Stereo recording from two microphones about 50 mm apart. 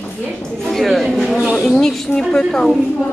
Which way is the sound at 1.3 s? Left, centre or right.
Right.